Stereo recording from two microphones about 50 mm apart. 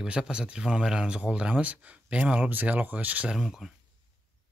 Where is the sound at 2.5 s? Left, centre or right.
Right.